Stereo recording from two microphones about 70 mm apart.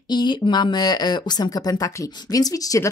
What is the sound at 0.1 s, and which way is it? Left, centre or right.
Speech, left.